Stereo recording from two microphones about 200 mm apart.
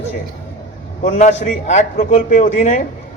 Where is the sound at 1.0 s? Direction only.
40° left (ahead or behind).